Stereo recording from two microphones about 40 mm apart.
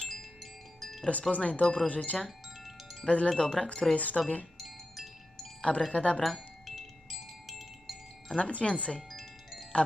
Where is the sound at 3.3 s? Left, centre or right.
Centre.